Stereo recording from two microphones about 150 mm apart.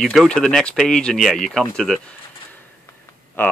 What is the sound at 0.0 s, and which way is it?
Speech, centre (ahead or behind).